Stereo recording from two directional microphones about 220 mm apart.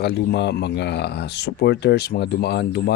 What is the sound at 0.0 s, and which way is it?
Speech, 45° left (ahead or behind).